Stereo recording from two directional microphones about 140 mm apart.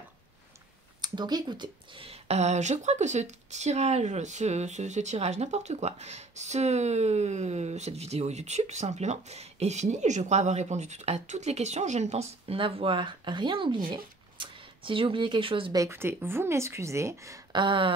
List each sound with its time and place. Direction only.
1.0 s speech: 30° right (ahead or behind)
15.7 s a woman's voice: 20° right (ahead or behind)
17.5 s a sound: 35° right (ahead or behind)